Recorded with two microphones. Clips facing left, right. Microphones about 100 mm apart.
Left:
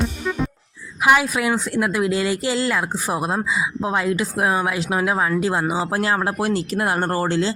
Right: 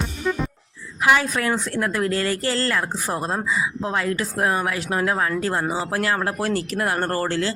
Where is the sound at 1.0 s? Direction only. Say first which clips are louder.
Left 2 dB; 15° left (ahead or behind).